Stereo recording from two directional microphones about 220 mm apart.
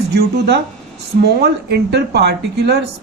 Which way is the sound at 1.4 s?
50° right (ahead or behind).